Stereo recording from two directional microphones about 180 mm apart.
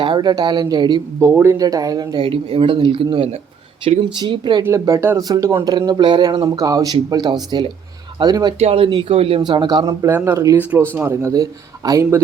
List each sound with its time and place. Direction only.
0.0 s speech: 25° right (ahead or behind)
1.3 s speech: 15° right (ahead or behind)
8.5 s speech: 35° right (ahead or behind)